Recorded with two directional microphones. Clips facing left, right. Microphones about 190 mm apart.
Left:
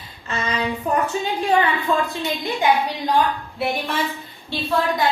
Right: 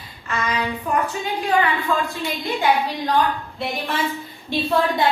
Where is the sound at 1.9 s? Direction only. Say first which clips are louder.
Left 3 dB; 20° left (ahead or behind).